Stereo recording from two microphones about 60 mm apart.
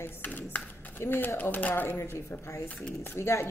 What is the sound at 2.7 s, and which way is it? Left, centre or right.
Typewriter, left.